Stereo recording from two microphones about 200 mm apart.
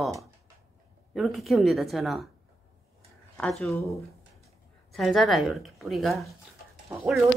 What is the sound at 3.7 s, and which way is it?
Speech, 15° left (ahead or behind).